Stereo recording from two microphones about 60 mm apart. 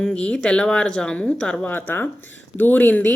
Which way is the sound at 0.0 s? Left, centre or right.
Centre.